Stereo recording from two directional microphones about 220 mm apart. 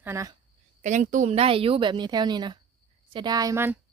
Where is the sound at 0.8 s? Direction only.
35° right (ahead or behind); by 3.8 s 10° right (ahead or behind).